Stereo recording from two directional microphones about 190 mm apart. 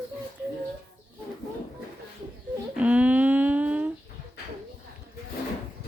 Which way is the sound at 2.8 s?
5° right (ahead or behind).